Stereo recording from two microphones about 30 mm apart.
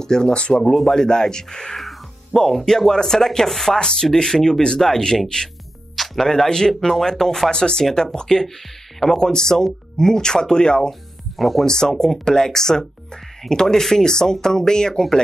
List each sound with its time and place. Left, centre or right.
0.0 s speech: left
0.3 s speech: left
0.9 s speech: left
2.3 s a sound: centre
3.7 s speech: left
6.8 s a sound: centre
7.5 s speech: left
10.9 s music: centre
11.6 s speech: left